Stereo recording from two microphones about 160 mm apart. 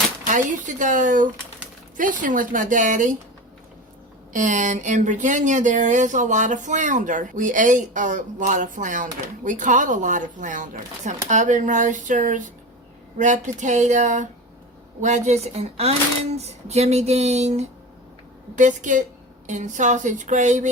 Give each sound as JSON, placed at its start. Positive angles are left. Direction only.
{"t": 0.3, "sound": "speech", "side_deg": -55}
{"t": 4.3, "sound": "speech", "side_deg": -55}